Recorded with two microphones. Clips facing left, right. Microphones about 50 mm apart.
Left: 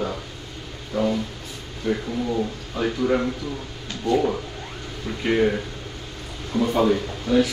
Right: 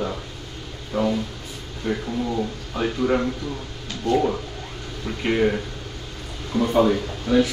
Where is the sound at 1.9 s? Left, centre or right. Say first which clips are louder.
Left 1 dB; right.